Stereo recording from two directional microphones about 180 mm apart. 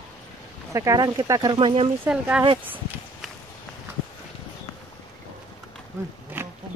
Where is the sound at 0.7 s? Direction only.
20° right (ahead or behind).